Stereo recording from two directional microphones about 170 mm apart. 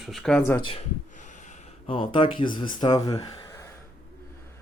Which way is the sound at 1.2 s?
45° left (ahead or behind).